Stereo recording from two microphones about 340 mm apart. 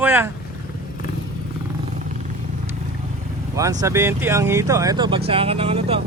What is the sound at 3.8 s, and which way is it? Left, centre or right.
Speech, centre.